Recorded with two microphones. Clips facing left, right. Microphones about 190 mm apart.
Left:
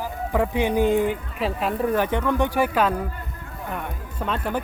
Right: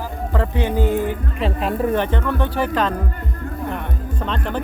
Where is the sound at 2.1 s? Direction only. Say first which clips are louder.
Even; 15° left (ahead or behind).